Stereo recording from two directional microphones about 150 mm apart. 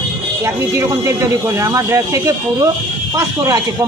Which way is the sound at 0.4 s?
20° right (ahead or behind).